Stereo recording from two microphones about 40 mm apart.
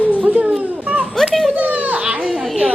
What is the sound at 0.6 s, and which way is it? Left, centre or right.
Children playing, right.